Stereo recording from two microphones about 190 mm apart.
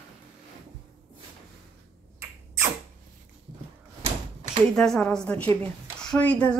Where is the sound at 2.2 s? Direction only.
15° right (ahead or behind).